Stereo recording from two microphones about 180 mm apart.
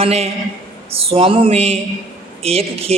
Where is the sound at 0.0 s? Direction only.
35° right (ahead or behind).